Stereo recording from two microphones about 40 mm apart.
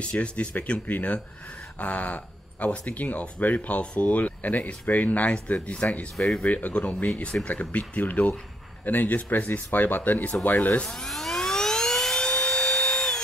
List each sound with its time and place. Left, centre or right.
0.2 s speech: left
6.1 s speech: centre
6.4 s speech: left
7.1 s speech: left
7.4 s speech: left
10.9 s dental drill: centre
12.2 s drill: left